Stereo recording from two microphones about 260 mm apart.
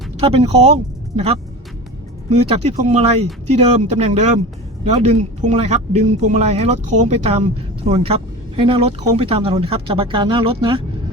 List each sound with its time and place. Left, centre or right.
0.2 s speech: right
5.4 s speech: right